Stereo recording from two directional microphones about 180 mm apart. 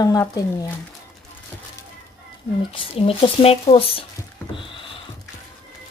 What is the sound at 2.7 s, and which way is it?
Speech, 30° left (ahead or behind).